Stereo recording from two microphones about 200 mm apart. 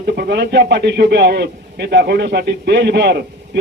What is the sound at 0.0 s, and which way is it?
A man's voice, 55° right (ahead or behind).